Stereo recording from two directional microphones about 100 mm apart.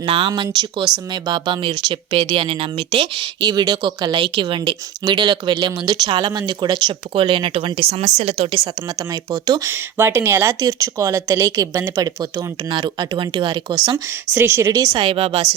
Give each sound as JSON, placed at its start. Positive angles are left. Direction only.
{"t": 0.0, "sound": "speech", "side_deg": -65}
{"t": 0.3, "sound": "speech", "side_deg": -50}
{"t": 3.4, "sound": "speech", "side_deg": -40}
{"t": 9.6, "sound": "speech", "side_deg": -25}
{"t": 13.9, "sound": "speech", "side_deg": -25}
{"t": 14.9, "sound": "speech", "side_deg": -60}